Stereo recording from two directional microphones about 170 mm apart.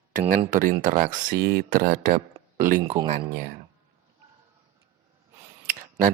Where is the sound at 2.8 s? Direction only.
25° right (ahead or behind).